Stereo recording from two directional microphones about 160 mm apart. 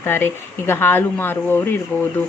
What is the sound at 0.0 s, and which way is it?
Speech, 15° left (ahead or behind).